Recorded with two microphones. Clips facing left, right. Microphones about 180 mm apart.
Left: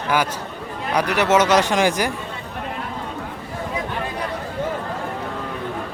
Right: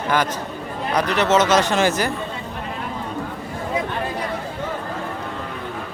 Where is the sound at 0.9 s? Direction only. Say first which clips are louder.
Even; 10° left (ahead or behind).